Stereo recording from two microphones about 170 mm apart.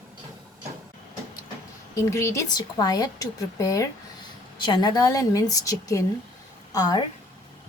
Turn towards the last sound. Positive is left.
turn(degrees=20)  # may be behind; listen again after turning